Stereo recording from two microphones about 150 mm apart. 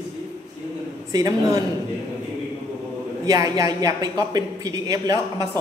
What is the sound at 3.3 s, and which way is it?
A woman's voice, 25° right (ahead or behind).